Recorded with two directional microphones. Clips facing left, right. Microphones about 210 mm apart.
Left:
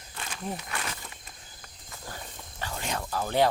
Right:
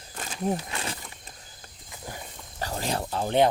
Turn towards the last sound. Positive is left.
turn(degrees=-25)  # may be behind; listen again after turning